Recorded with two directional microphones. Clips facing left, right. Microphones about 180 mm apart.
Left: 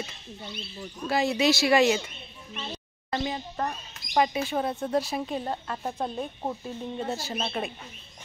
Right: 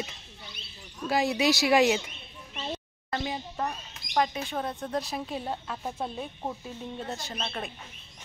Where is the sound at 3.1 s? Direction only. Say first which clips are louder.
Left 2 dB; 5° right (ahead or behind).